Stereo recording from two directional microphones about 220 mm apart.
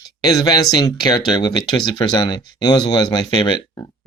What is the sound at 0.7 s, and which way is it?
Speech, 20° left (ahead or behind).